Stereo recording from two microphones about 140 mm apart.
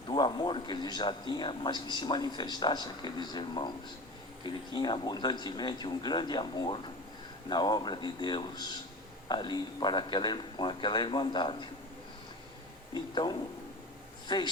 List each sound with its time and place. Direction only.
0.1 s a man's voice: 35° left (ahead or behind)
12.9 s a man's voice: 30° left (ahead or behind)